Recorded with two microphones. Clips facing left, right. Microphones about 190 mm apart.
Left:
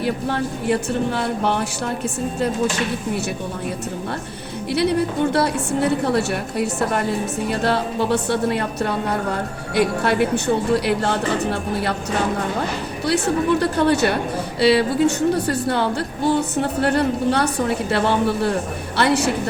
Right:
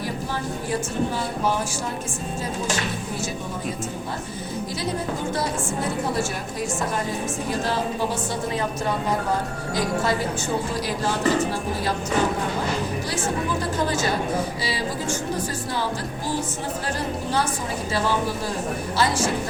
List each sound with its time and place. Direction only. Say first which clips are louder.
0.0 s a woman's voice: left 6 dB; 65° left (ahead or behind)
4.7 s a woman's voice: left 11 dB; 65° left (ahead or behind)
13.1 s a woman's voice: left 12 dB; 65° left (ahead or behind)